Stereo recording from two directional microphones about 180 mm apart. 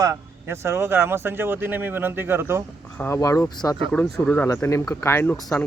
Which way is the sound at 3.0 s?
15° left (ahead or behind).